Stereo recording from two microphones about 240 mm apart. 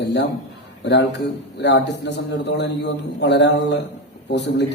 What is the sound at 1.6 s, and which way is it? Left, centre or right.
A man's voice, left.